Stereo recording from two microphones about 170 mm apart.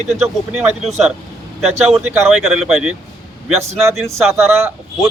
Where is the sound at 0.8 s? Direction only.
40° right (ahead or behind).